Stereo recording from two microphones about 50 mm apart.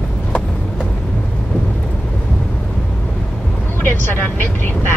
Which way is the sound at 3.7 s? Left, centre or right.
Left.